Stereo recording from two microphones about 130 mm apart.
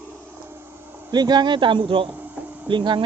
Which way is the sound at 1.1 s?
35° right (ahead or behind).